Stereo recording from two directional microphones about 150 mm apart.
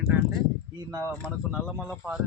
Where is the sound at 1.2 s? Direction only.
5° right (ahead or behind).